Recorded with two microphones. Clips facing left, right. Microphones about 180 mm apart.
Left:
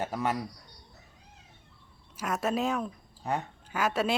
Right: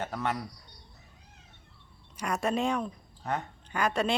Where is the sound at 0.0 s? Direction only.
10° left (ahead or behind).